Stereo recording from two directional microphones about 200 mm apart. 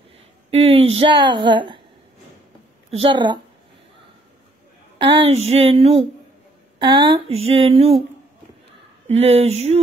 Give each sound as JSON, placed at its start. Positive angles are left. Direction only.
{"t": 0.5, "sound": "a woman's voice", "side_deg": -30}
{"t": 2.9, "sound": "a woman's voice", "side_deg": -25}
{"t": 5.1, "sound": "a woman's voice", "side_deg": -30}
{"t": 9.0, "sound": "speech", "side_deg": -30}